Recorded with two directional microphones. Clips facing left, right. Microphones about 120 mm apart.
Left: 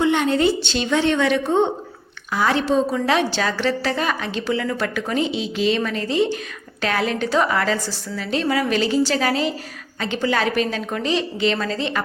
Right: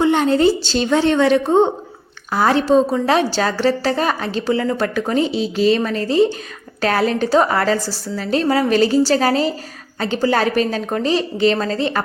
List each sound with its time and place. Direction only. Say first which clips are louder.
0.0 s a woman's voice: right 4 dB; 35° right (ahead or behind)